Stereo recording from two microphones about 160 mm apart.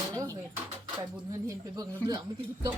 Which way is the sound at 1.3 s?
20° right (ahead or behind).